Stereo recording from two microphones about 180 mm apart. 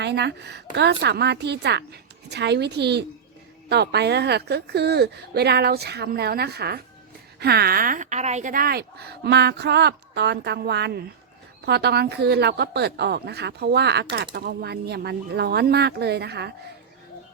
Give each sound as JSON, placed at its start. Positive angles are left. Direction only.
{"t": 0.0, "sound": "a woman's voice", "side_deg": -75}